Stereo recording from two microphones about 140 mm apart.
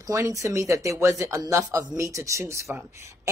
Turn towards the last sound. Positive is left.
turn(degrees=-20)  # may be behind; listen again after turning